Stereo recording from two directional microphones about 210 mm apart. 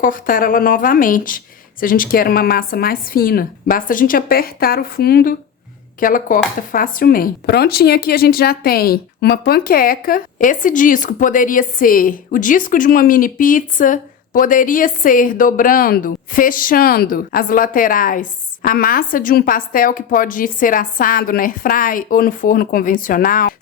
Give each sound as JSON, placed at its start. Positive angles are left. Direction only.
{"t": 0.0, "sound": "a woman's voice", "side_deg": 40}